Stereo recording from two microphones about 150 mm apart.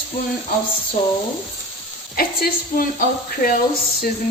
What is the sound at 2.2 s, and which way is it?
A woman's voice, 70° left (ahead or behind).